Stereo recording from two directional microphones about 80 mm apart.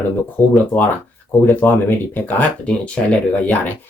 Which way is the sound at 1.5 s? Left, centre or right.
Left.